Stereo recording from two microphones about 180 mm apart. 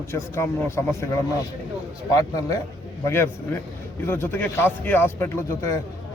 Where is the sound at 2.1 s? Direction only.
20° left (ahead or behind).